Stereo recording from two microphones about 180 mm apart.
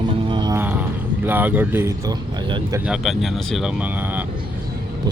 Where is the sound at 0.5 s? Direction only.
10° right (ahead or behind); by 2.8 s 25° right (ahead or behind).